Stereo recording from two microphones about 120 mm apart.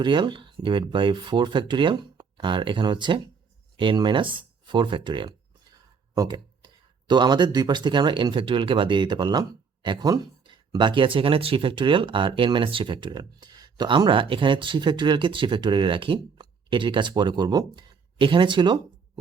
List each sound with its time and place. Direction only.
0.0 s speech: 40° right (ahead or behind)
6.1 s a sound: 35° right (ahead or behind)
7.1 s speech: 35° right (ahead or behind)